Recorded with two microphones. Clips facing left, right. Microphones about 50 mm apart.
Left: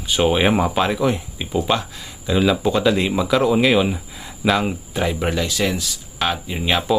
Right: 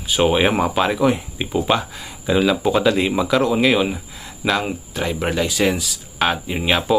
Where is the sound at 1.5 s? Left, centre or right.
Centre.